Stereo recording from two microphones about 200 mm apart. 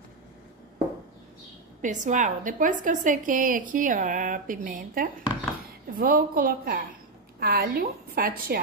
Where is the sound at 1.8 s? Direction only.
40° right (ahead or behind).